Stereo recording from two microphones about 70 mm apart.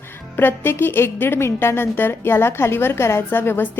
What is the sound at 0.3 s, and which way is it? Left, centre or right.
A woman's voice, left.